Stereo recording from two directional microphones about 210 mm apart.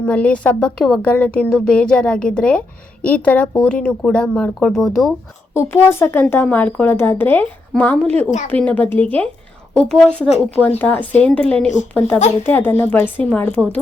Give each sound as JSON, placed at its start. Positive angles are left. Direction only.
{"t": 0.0, "sound": "speech", "side_deg": 5}